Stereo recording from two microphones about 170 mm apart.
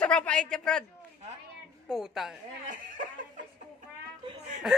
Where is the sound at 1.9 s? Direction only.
Centre (ahead or behind).